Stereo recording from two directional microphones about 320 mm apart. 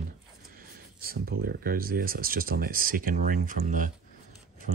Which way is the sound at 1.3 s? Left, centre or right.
Right.